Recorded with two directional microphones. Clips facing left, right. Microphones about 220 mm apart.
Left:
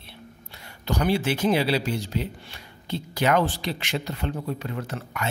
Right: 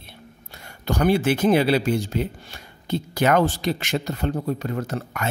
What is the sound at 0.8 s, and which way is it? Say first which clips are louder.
Speech: right 4 dB; 50° right (ahead or behind).